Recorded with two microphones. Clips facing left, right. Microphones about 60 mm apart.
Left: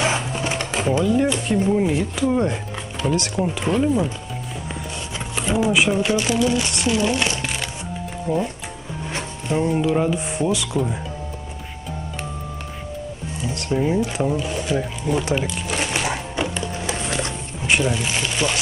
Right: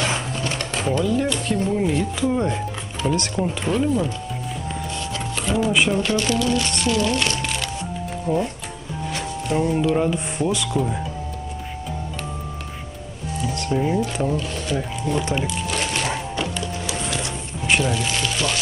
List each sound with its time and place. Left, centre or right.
0.0 s speech: centre
5.1 s a sound: centre
5.7 s speech: centre
8.3 s speech: left
9.7 s speech: centre
13.7 s speech: centre
16.4 s music: left
17.6 s speech: centre